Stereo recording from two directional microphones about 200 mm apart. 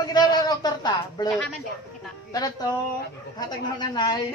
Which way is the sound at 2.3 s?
20° left (ahead or behind).